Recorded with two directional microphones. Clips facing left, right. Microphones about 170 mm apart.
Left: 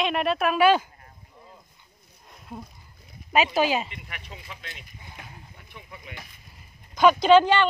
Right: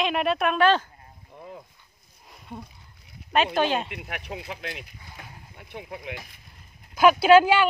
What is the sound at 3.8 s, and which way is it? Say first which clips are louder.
Speech: right 7 dB; 70° right (ahead or behind).